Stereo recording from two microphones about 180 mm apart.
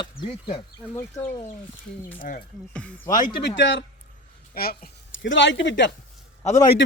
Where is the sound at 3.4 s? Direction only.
90° left.